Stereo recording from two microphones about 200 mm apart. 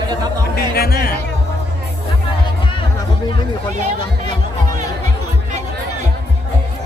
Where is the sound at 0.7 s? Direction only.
50° left (ahead or behind).